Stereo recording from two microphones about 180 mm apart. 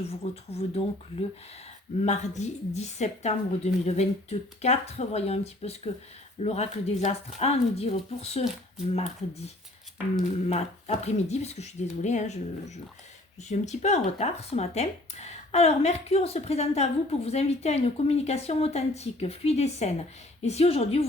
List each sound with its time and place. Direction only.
0.0 s speech: 35° left (ahead or behind)
10.2 s speech: 35° left (ahead or behind)